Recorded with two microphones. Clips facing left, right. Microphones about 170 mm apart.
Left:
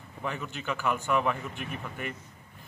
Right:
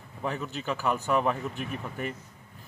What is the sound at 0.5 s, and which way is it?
Speech, 35° right (ahead or behind).